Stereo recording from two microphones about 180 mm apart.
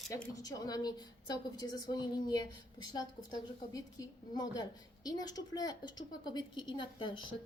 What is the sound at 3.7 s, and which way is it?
A woman's voice, 20° left (ahead or behind).